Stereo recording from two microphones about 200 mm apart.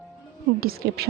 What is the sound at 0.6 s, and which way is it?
Speech, 50° right (ahead or behind).